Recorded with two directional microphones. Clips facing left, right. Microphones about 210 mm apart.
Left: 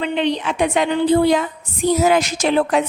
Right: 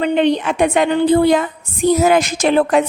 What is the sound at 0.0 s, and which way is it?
A woman's voice, 45° right (ahead or behind).